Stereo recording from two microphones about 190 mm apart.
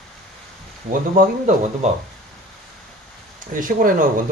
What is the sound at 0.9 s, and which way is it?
Speech, 45° right (ahead or behind).